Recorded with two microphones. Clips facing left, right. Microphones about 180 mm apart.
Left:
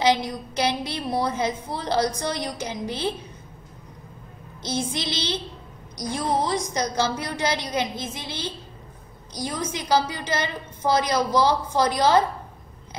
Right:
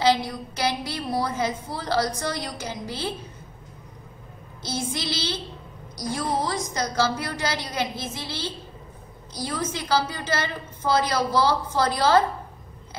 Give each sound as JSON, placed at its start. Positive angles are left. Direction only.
{"t": 0.0, "sound": "a woman's voice", "side_deg": 20}
{"t": 4.6, "sound": "a woman's voice", "side_deg": 20}